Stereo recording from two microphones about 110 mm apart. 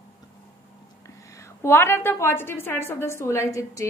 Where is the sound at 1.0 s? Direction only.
25° left (ahead or behind).